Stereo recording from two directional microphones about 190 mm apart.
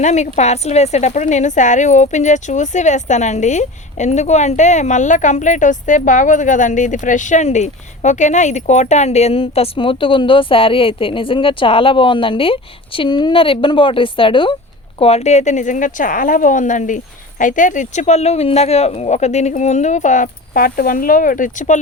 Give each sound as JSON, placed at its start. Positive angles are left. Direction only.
{"t": 0.0, "sound": "a woman's voice", "side_deg": 35}